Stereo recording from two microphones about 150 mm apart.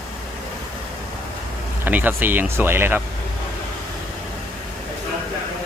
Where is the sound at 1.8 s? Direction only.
10° right (ahead or behind).